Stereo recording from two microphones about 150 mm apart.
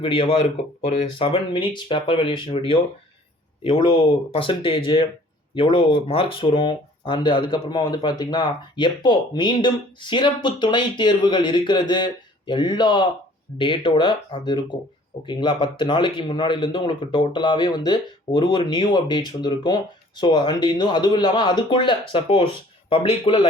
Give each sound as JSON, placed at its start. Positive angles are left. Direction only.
{"t": 0.0, "sound": "speech", "side_deg": 35}